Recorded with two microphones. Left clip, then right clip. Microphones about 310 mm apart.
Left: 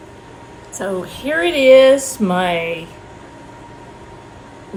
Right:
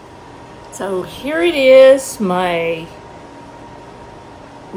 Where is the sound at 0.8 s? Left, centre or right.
Centre.